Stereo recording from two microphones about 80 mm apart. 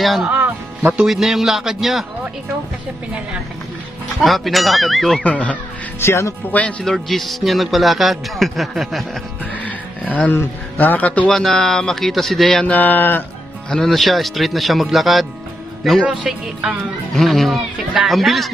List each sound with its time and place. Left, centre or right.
0.0 s speech: centre
0.3 s music: right
0.9 s a woman's voice: centre
4.2 s a woman's voice: centre
5.2 s speech: centre
5.9 s speech: left
6.8 s a woman's voice: centre
10.3 s a man's voice: left
11.3 s a woman's voice: centre
12.7 s a man's voice: left
13.7 s a woman's voice: centre